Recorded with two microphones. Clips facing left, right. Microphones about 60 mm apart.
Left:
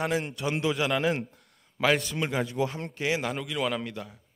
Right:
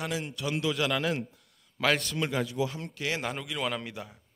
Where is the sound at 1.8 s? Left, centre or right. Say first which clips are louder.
Left 2 dB; centre.